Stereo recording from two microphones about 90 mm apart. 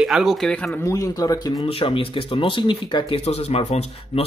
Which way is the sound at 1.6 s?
90° left.